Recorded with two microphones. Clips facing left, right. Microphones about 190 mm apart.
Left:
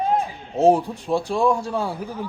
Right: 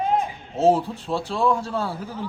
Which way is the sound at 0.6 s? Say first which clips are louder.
Left 2 dB; 15° left (ahead or behind).